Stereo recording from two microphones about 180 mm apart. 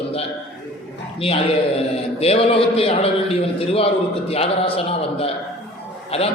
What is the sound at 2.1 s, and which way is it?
A man's voice, 35° left (ahead or behind).